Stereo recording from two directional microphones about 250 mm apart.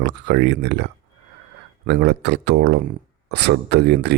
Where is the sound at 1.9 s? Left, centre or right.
Right.